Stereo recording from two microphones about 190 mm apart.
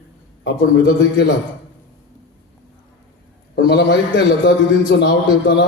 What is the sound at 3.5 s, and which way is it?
A man's voice, 70° left (ahead or behind).